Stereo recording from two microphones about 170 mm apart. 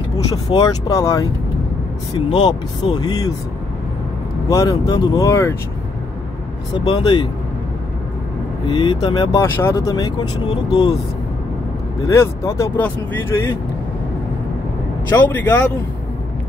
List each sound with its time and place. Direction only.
0.3 s speech: 25° left (ahead or behind)
2.4 s speech: 25° left (ahead or behind)
4.5 s speech: 20° left (ahead or behind)
6.7 s speech: 25° left (ahead or behind)
8.6 s speech: 25° left (ahead or behind)
12.1 s speech: 15° left (ahead or behind)
15.1 s speech: 10° left (ahead or behind)